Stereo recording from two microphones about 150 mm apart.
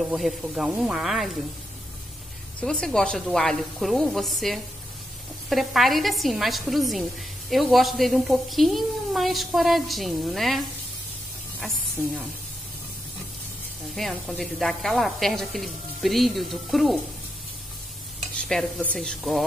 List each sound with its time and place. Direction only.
0.1 s a woman's voice: centre (ahead or behind)
2.6 s a woman's voice: 5° left (ahead or behind)
13.9 s a woman's voice: centre (ahead or behind)
18.5 s a woman's voice: 5° left (ahead or behind)